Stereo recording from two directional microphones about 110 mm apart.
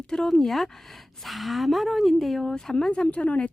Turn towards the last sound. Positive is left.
turn(degrees=10)  # may be behind; listen again after turning